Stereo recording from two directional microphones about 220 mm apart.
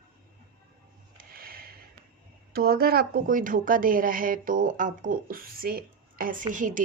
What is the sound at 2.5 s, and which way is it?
A woman's voice, 45° right (ahead or behind).